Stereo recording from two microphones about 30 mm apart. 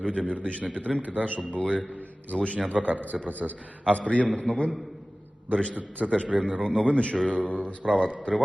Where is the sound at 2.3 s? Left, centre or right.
Left.